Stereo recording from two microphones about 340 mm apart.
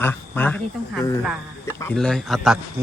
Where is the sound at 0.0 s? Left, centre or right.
Centre.